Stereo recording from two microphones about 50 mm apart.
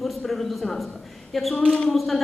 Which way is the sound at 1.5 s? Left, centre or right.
Centre.